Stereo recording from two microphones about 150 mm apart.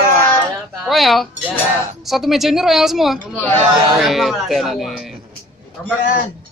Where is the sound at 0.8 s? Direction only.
Centre (ahead or behind).